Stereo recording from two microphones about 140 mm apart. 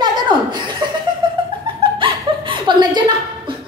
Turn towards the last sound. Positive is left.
turn(degrees=-35)  # may be behind; listen again after turning